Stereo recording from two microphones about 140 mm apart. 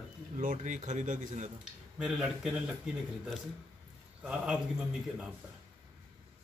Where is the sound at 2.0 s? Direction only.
5° right (ahead or behind).